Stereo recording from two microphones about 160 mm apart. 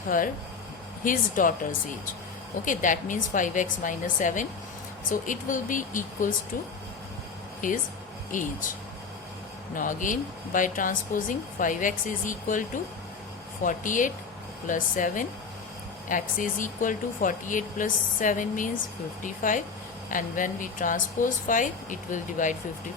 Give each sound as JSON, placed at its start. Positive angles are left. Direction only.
{"t": 0.1, "sound": "speech", "side_deg": 55}
{"t": 2.6, "sound": "a woman's voice", "side_deg": 55}
{"t": 8.3, "sound": "speech", "side_deg": 55}
{"t": 9.7, "sound": "speech", "side_deg": 55}